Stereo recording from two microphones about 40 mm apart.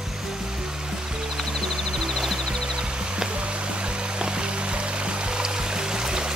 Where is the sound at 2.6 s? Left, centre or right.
Right.